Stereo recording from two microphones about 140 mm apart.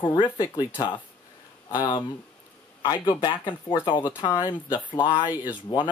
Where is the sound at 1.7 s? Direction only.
30° left (ahead or behind).